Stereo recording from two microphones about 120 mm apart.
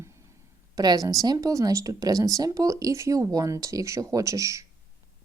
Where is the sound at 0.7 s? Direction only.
30° right (ahead or behind).